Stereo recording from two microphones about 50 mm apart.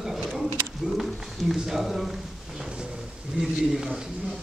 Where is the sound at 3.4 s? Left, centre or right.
Centre.